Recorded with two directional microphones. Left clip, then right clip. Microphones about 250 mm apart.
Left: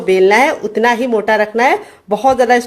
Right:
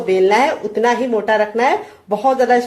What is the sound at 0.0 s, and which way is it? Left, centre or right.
Speech, left.